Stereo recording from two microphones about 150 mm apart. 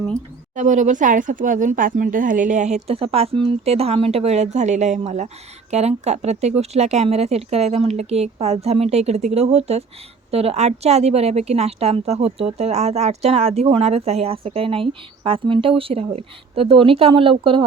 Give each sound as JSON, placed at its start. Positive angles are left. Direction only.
{"t": 0.5, "sound": "a woman's voice", "side_deg": -55}